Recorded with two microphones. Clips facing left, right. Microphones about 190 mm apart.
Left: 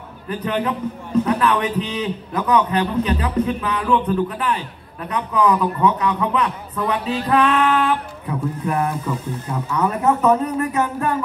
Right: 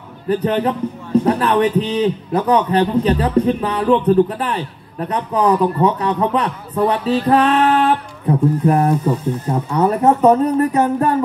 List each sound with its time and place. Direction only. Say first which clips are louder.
0.3 s speech: right 6 dB; 35° right (ahead or behind)